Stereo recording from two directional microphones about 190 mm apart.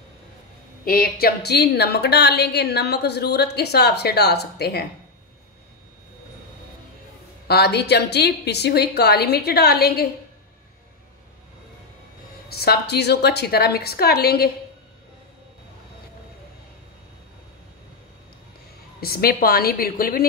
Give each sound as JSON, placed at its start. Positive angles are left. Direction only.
{"t": 0.8, "sound": "a woman's voice", "side_deg": 50}
{"t": 7.4, "sound": "a woman's voice", "side_deg": 55}
{"t": 12.4, "sound": "a woman's voice", "side_deg": 55}
{"t": 18.9, "sound": "a woman's voice", "side_deg": 50}